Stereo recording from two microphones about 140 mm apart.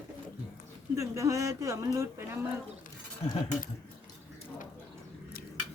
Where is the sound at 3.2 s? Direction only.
45° left (ahead or behind).